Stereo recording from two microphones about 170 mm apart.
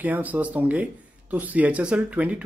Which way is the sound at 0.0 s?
10° right (ahead or behind).